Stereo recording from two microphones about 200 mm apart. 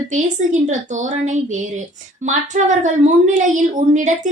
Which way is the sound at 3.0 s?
40° right (ahead or behind).